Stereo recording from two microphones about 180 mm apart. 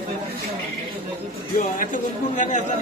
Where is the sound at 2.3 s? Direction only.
45° left (ahead or behind).